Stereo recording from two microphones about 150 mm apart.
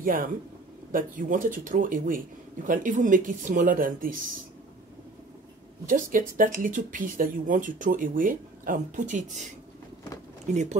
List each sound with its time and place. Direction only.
0.0 s a man's voice: 65° right (ahead or behind)
5.9 s speech: 65° right (ahead or behind)
10.5 s speech: 50° right (ahead or behind)